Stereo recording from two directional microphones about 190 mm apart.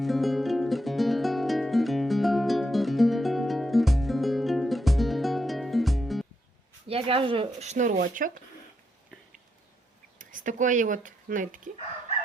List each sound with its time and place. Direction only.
0.0 s music: centre (ahead or behind)
6.8 s speech: 30° right (ahead or behind); by 8.3 s 45° right (ahead or behind)
10.2 s speech: 45° right (ahead or behind)